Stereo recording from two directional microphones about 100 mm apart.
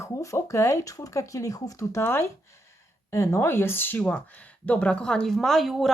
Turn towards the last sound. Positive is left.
turn(degrees=0)  # may be behind; listen again after turning